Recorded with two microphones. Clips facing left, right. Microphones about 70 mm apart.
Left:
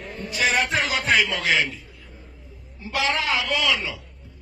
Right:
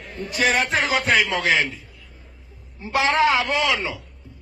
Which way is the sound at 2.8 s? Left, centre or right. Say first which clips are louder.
Right 6 dB; right.